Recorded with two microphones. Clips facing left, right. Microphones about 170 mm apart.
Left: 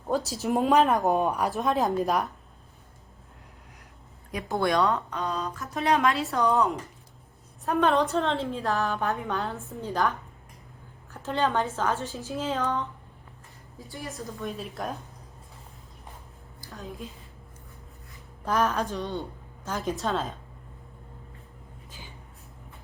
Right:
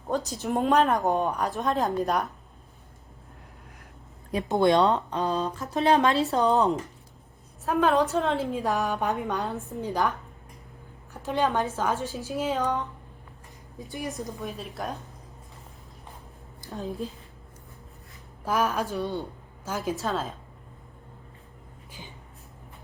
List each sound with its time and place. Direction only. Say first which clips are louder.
0.3 s speech: left 1 dB; 5° left (ahead or behind)
4.3 s speech: right 5 dB; 25° right (ahead or behind)
5.2 s speech: right 4 dB; 35° right (ahead or behind)
7.6 s speech: right 1 dB; centre (ahead or behind)
8.5 s a woman's voice: right 1 dB; 15° right (ahead or behind)
11.1 s a woman's voice: right 1 dB; 15° right (ahead or behind)
14.4 s speech: left 4 dB; centre (ahead or behind)
16.6 s speech: right 7 dB; 35° right (ahead or behind)
18.4 s a woman's voice: even; 10° right (ahead or behind)